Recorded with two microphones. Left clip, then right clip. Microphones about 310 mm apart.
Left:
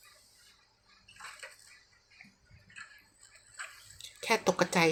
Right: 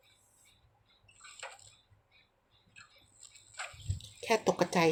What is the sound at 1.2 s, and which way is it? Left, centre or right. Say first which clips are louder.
Bathtub: left 1 dB; centre.